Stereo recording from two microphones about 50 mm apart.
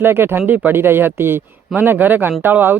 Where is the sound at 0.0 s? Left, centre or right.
Right.